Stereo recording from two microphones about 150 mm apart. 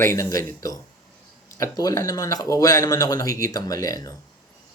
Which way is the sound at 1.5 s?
25° left (ahead or behind).